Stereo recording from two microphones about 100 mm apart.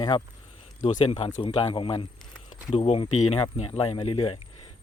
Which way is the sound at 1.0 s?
90° left.